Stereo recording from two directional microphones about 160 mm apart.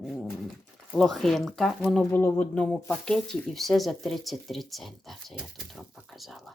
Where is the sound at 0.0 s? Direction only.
Centre (ahead or behind).